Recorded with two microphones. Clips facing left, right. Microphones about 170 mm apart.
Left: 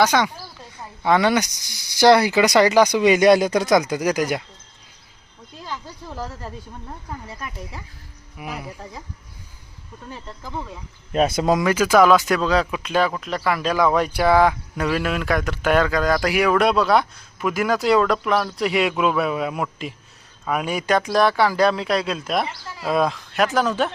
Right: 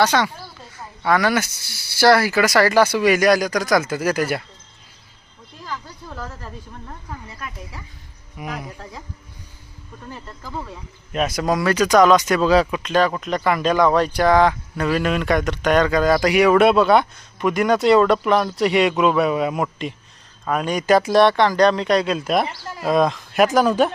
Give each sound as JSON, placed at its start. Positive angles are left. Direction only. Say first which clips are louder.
{"t": 0.0, "sound": "speech", "louder": "even", "side_deg": 10}
{"t": 1.0, "sound": "speech", "louder": "left 1 dB", "side_deg": 20}
{"t": 5.6, "sound": "a sound", "louder": "even", "side_deg": 20}
{"t": 8.4, "sound": "speech", "louder": "right 1 dB", "side_deg": 5}
{"t": 11.1, "sound": "speech", "louder": "left 2 dB", "side_deg": 30}
{"t": 11.7, "sound": "speech", "louder": "right 2 dB", "side_deg": 5}
{"t": 20.8, "sound": "speech", "louder": "right 5 dB", "side_deg": -5}
{"t": 23.3, "sound": "speech", "louder": "right 6 dB", "side_deg": -10}